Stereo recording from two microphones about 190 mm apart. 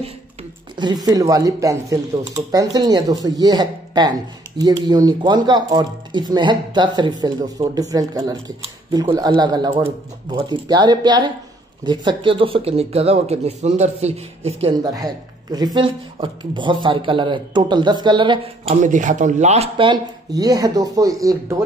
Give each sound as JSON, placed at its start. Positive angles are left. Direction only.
{"t": 0.7, "sound": "a man's voice", "side_deg": -20}
{"t": 14.8, "sound": "a man's voice", "side_deg": -20}